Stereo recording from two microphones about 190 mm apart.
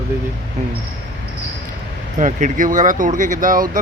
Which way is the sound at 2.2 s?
40° right (ahead or behind).